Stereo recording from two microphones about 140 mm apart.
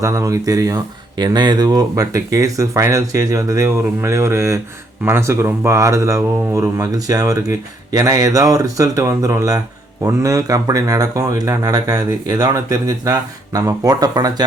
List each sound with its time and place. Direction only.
0.0 s speech: 25° right (ahead or behind)